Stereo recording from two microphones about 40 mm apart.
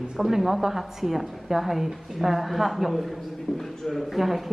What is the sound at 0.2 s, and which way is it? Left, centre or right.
A woman's voice, centre.